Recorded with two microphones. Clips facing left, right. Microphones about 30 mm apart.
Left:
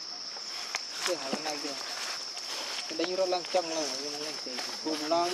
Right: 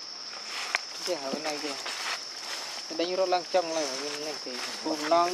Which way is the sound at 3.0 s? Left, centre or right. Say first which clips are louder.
Right 3 dB; centre.